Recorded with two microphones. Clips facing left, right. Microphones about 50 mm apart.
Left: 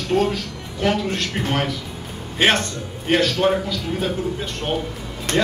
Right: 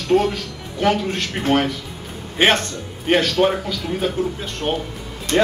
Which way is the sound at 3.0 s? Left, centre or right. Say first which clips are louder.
Right 1 dB; centre.